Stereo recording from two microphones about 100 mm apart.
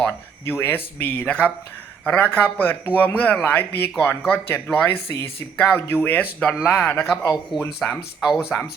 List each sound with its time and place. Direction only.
0.0 s speech: 20° left (ahead or behind)
7.0 s speech: 30° left (ahead or behind)
8.2 s speech: 5° right (ahead or behind)